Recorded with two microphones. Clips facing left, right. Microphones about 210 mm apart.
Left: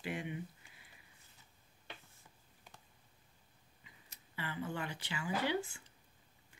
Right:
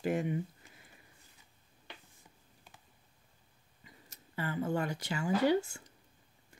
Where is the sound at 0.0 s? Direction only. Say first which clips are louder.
Right 9 dB; 45° right (ahead or behind).